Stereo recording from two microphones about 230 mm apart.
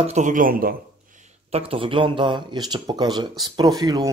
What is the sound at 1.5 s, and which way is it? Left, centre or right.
Speech, right.